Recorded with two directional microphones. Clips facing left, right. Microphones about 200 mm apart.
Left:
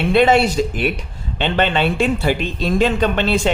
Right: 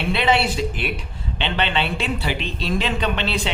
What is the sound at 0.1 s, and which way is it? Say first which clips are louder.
Speech: left 7 dB; 45° left (ahead or behind).